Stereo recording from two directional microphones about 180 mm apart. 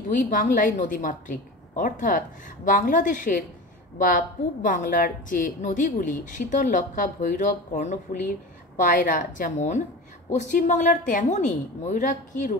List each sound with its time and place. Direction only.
0.1 s a woman's voice: 45° left (ahead or behind)